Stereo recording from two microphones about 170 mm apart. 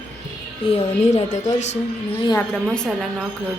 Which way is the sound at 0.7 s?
40° left (ahead or behind).